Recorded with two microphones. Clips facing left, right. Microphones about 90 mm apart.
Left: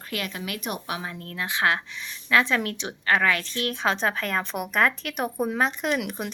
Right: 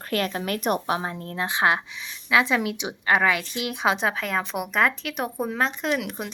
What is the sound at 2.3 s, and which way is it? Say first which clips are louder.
A woman's voice: right 1 dB; 10° right (ahead or behind).